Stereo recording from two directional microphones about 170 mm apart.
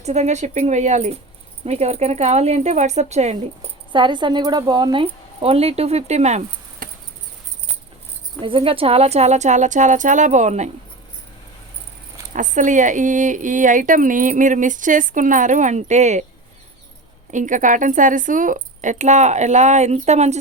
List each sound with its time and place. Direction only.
0.0 s a woman's voice: 40° right (ahead or behind)
3.9 s a woman's voice: 25° right (ahead or behind)
6.8 s mouse: 55° right (ahead or behind)
8.4 s speech: 30° right (ahead or behind)
12.3 s speech: 50° right (ahead or behind)
17.3 s speech: 50° right (ahead or behind)